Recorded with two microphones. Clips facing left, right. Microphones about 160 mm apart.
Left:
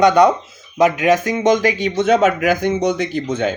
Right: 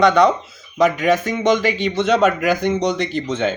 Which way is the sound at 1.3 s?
45° left (ahead or behind).